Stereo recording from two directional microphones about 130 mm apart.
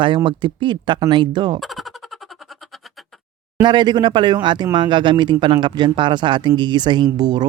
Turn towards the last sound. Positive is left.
turn(degrees=-30)  # may be behind; listen again after turning